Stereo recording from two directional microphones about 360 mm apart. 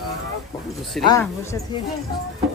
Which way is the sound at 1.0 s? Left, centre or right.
Centre.